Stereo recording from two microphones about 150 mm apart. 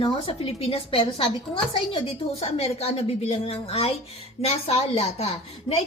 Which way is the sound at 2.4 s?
45° left (ahead or behind).